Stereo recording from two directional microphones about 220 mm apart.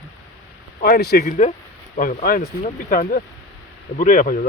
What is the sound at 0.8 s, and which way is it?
Speech, 45° left (ahead or behind).